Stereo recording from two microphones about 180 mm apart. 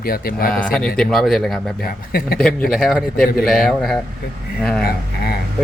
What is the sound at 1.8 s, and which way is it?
Speech, 60° left (ahead or behind).